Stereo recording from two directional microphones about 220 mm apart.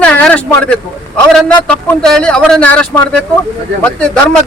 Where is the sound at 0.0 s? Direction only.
5° left (ahead or behind).